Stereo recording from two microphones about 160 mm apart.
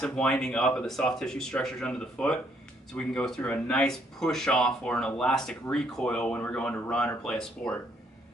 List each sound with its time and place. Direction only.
0.0 s speech: 5° left (ahead or behind)